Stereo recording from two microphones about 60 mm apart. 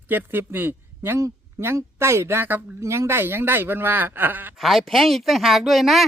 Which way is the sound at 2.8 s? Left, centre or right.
Right.